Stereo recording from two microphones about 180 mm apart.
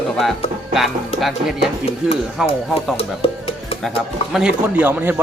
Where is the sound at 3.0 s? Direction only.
35° left (ahead or behind).